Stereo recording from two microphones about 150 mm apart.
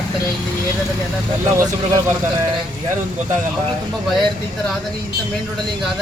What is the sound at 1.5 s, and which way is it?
Speech, 20° right (ahead or behind).